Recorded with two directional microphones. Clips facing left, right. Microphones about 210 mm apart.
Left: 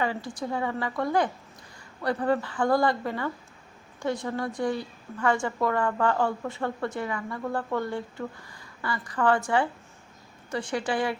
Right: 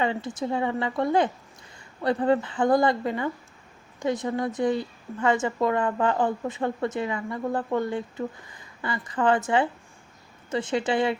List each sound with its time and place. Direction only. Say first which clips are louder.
0.0 s a woman's voice: right 3 dB; 20° right (ahead or behind)